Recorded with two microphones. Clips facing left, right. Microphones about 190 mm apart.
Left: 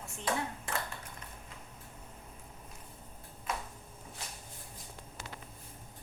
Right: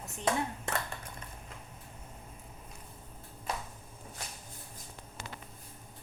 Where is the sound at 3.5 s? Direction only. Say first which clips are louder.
Even; 30° right (ahead or behind).